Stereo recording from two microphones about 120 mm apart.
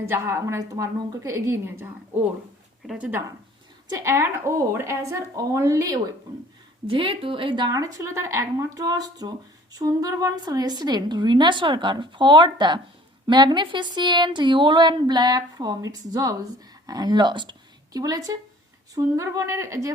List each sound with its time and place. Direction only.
0.0 s speech: 20° right (ahead or behind)
2.8 s a woman's voice: 5° right (ahead or behind)
3.8 s speech: 25° right (ahead or behind)
6.8 s a woman's voice: 45° right (ahead or behind); by 19.9 s 25° right (ahead or behind)